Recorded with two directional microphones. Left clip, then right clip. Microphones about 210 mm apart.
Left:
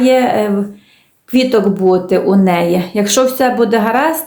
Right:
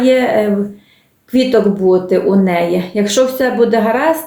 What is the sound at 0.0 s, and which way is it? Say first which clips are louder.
Speech: even; 35° left (ahead or behind).